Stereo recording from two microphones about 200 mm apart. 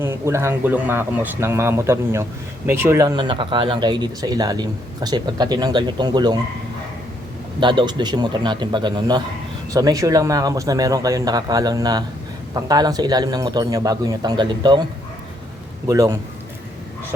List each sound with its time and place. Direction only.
0.0 s speech: 15° right (ahead or behind)
7.6 s speech: 25° right (ahead or behind)
15.9 s speech: 15° right (ahead or behind)